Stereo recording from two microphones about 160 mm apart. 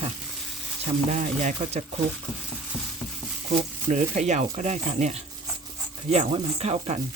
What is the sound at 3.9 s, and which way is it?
Speech, 45° right (ahead or behind).